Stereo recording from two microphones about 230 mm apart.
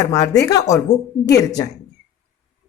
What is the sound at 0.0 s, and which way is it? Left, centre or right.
Speech, centre.